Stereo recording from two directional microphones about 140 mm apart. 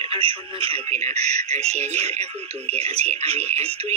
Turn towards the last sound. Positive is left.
turn(degrees=-45)  # may be behind; listen again after turning